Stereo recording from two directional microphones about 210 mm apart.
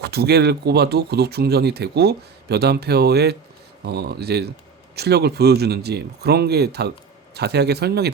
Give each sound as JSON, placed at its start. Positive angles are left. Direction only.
{"t": 0.0, "sound": "speech", "side_deg": -50}